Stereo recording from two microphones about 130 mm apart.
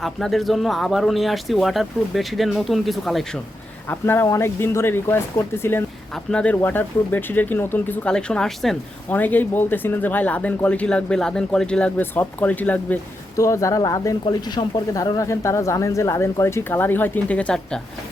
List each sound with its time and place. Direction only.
0.0 s speech: centre (ahead or behind)
3.8 s speech: 20° left (ahead or behind); by 8.8 s centre (ahead or behind)
9.0 s speech: 15° left (ahead or behind)
13.3 s speech: 25° left (ahead or behind); by 17.7 s 5° left (ahead or behind)